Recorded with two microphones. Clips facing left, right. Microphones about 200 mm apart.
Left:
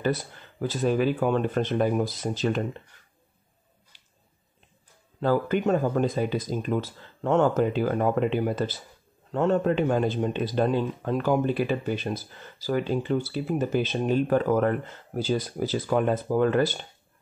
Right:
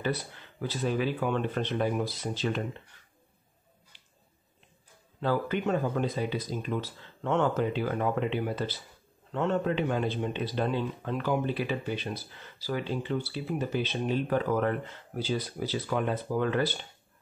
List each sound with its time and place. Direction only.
0.0 s speech: 45° left (ahead or behind)
5.2 s speech: 45° left (ahead or behind)